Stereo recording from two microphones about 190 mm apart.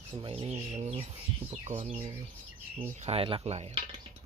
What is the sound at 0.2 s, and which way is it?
Speech, 30° right (ahead or behind).